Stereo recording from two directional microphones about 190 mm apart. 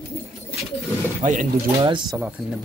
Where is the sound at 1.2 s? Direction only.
40° right (ahead or behind).